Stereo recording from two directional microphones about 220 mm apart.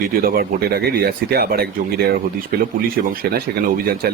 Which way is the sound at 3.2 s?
45° right (ahead or behind).